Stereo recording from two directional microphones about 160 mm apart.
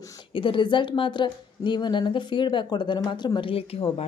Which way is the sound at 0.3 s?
30° left (ahead or behind).